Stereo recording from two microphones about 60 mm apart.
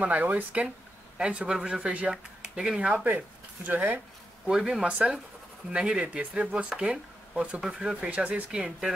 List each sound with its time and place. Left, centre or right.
0.0 s speech: right
2.9 s speech: right
4.5 s speech: centre; by 8.5 s right
8.5 s speech: centre